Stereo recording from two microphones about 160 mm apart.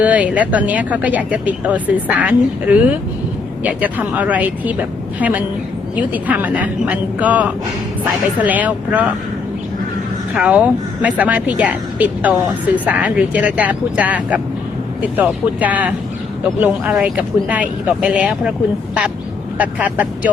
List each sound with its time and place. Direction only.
0.0 s speech: 10° right (ahead or behind)
10.3 s speech: 10° right (ahead or behind)
19.5 s speech: 10° right (ahead or behind)